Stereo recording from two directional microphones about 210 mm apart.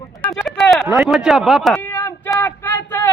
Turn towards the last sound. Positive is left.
turn(degrees=10)  # may be behind; listen again after turning